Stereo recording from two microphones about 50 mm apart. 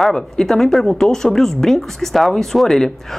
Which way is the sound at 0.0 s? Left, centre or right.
Centre.